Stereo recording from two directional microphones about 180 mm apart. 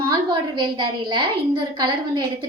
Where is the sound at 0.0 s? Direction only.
25° right (ahead or behind).